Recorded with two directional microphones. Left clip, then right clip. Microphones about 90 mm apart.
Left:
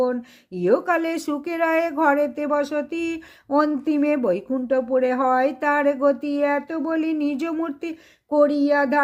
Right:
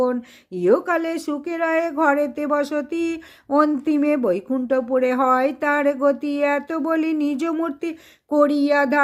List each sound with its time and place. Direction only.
0.0 s speech: 25° right (ahead or behind)
0.9 s speech: 5° right (ahead or behind)
2.0 s speech: 20° right (ahead or behind)
8.3 s speech: 40° right (ahead or behind)